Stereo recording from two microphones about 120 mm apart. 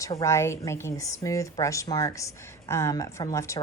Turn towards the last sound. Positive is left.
turn(degrees=25)  # may be behind; listen again after turning